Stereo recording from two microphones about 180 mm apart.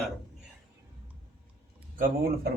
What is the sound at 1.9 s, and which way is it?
Speech, 50° right (ahead or behind).